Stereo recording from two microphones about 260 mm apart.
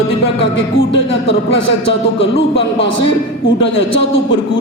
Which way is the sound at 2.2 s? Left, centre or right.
Left.